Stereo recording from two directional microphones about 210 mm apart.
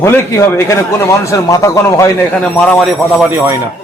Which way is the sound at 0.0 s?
10° left (ahead or behind).